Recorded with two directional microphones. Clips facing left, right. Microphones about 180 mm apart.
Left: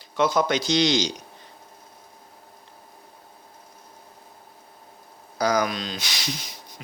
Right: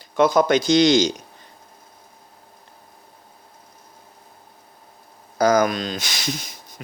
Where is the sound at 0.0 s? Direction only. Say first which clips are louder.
Right 5 dB; 50° right (ahead or behind).